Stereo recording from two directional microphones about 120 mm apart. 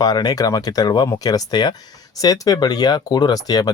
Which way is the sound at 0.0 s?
35° left (ahead or behind).